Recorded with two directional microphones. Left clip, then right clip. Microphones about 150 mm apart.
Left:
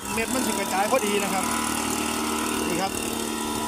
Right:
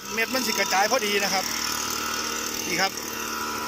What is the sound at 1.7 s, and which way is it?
Vehicle, 90° left.